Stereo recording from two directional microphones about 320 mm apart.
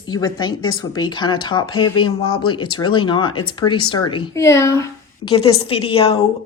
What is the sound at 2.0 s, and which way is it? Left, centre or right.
Speech, left.